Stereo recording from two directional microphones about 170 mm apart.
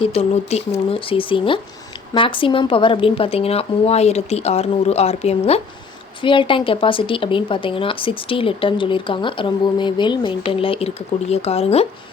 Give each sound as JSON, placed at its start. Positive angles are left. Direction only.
{"t": 0.0, "sound": "speech", "side_deg": 35}